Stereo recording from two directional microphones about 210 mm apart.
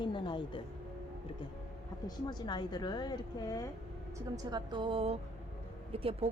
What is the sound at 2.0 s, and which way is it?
Speech, 20° left (ahead or behind).